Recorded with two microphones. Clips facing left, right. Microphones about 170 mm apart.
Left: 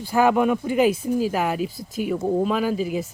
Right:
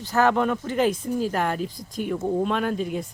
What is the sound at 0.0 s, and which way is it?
Speech, 10° left (ahead or behind).